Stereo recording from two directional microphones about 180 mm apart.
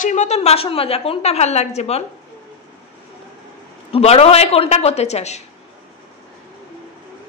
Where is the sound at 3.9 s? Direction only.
35° left (ahead or behind).